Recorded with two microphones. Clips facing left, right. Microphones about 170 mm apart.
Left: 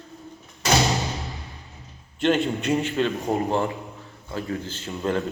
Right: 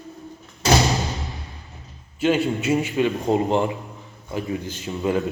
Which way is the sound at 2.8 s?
15° right (ahead or behind).